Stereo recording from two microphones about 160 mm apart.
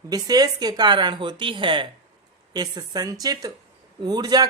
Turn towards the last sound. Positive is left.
turn(degrees=-25)  # may be behind; listen again after turning